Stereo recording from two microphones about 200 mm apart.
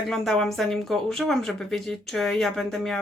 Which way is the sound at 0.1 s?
Centre (ahead or behind).